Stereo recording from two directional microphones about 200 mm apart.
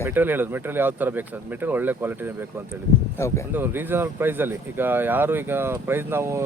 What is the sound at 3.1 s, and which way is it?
Speech, 15° left (ahead or behind).